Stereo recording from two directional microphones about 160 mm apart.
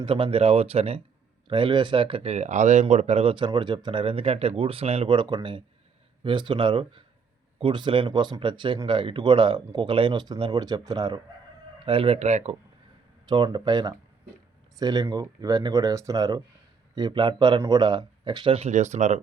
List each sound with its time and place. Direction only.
0.0 s speech: 35° right (ahead or behind)
13.2 s speech: 25° right (ahead or behind); by 19.2 s 45° right (ahead or behind)